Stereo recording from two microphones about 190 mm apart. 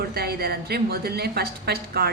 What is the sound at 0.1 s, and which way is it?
A woman's voice, 55° right (ahead or behind).